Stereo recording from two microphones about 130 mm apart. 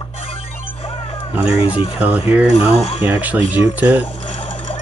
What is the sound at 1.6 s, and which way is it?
Speech, 45° left (ahead or behind).